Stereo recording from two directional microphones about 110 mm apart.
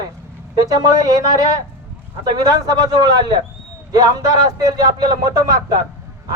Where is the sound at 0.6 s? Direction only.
35° right (ahead or behind).